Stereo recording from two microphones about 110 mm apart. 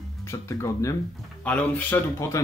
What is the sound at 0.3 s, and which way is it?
Speech, 25° left (ahead or behind).